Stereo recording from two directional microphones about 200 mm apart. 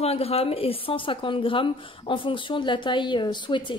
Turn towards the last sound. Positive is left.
turn(degrees=25)  # may be behind; listen again after turning